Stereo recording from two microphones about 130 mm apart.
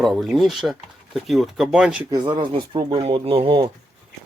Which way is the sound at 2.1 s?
35° right (ahead or behind).